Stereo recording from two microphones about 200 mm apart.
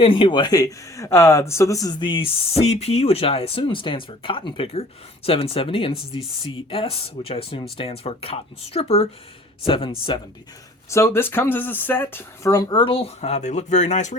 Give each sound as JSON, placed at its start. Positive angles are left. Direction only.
{"t": 0.0, "sound": "speech", "side_deg": 25}
{"t": 10.8, "sound": "speech", "side_deg": 15}